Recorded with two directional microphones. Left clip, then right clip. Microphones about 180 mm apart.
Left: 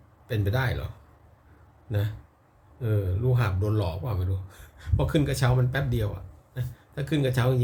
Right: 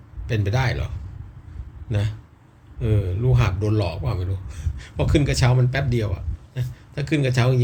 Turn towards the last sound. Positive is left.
turn(degrees=20)  # may be behind; listen again after turning